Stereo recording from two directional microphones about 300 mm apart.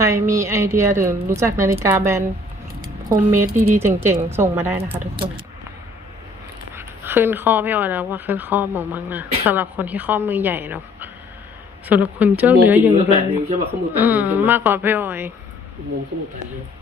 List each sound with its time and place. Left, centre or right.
0.1 s speech: centre
6.7 s speech: centre
13.1 s speech: right
13.9 s speech: centre